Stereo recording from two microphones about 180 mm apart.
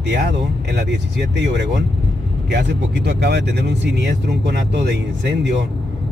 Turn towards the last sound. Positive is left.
turn(degrees=-70)  # may be behind; listen again after turning